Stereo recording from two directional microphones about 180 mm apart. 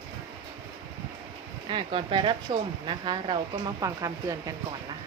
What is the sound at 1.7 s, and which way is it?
Speech, 30° right (ahead or behind).